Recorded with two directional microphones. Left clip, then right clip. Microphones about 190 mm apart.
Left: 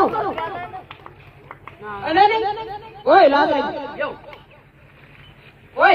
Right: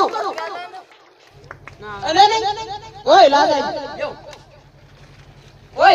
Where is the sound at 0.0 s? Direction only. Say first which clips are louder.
Even; 50° left (ahead or behind).